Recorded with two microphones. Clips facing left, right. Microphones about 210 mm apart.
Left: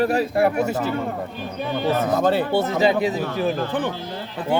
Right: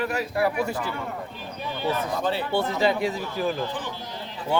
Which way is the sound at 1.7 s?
65° left (ahead or behind).